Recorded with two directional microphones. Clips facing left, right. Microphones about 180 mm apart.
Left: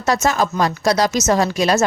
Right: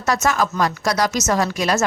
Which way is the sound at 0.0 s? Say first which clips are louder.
Left 2 dB; 30° left (ahead or behind).